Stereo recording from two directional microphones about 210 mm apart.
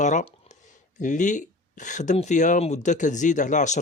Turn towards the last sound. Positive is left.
turn(degrees=35)  # may be behind; listen again after turning